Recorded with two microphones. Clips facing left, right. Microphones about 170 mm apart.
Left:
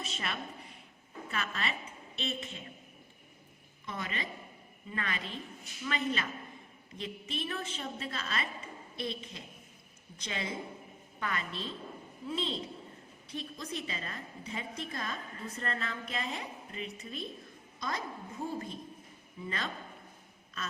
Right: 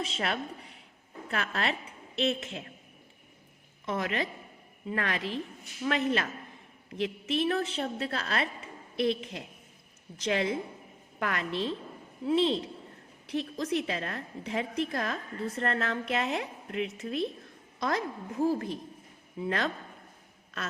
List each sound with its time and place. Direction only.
0.0 s a woman's voice: 85° right
1.3 s a woman's voice: 70° right (ahead or behind)
3.8 s a woman's voice: 85° right; by 8.4 s 70° right (ahead or behind)
9.0 s a woman's voice: 80° right
19.4 s a woman's voice: 75° right (ahead or behind)